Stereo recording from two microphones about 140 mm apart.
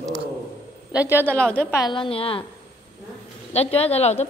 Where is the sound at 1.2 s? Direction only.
10° left (ahead or behind).